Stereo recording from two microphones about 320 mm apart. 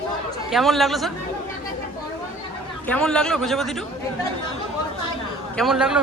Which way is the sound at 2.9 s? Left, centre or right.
Centre.